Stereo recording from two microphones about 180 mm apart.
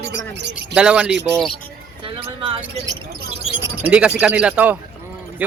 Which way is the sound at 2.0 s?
30° right (ahead or behind).